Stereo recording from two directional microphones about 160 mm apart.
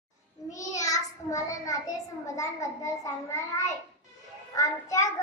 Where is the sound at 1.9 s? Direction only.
20° left (ahead or behind).